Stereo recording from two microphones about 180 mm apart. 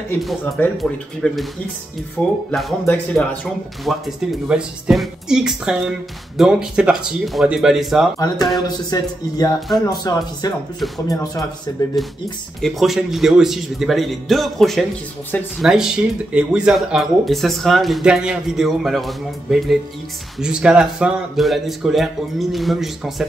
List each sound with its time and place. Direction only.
0.2 s speech: centre (ahead or behind)
2.8 s speech: 10° left (ahead or behind)
3.8 s speech: centre (ahead or behind)
8.6 s speech: 20° left (ahead or behind)
12.0 s speech: centre (ahead or behind)